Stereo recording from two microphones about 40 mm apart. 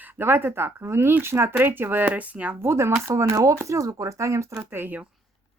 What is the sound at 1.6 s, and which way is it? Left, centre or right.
Speech, right.